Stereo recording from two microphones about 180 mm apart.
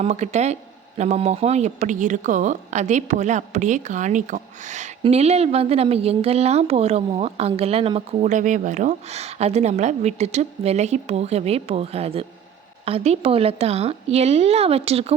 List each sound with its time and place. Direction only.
0.0 s speech: 40° right (ahead or behind)